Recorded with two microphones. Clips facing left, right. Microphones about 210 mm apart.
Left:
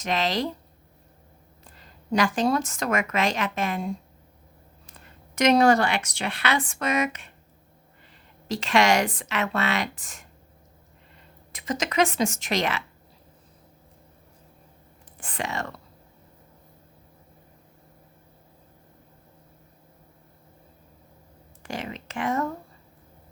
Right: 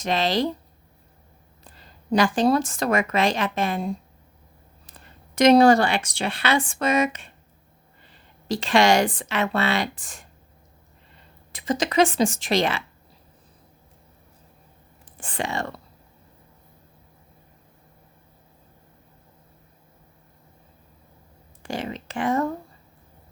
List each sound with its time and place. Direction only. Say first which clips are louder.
0.0 s speech: right 3 dB; 30° right (ahead or behind)
2.1 s speech: right 3 dB; 30° right (ahead or behind)
4.9 s speech: right 5 dB; 35° right (ahead or behind)
8.4 s speech: right 3 dB; 30° right (ahead or behind)
11.5 s speech: right 4 dB; 30° right (ahead or behind)
15.2 s speech: right 3 dB; 30° right (ahead or behind)
21.6 s speech: right 4 dB; 30° right (ahead or behind)